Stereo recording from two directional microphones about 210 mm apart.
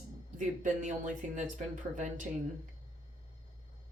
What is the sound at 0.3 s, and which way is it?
A woman's voice, 35° right (ahead or behind).